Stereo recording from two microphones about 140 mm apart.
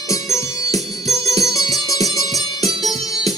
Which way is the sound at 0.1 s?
20° left (ahead or behind).